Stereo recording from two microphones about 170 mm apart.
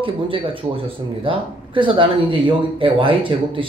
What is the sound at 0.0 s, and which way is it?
A man's voice, 30° right (ahead or behind).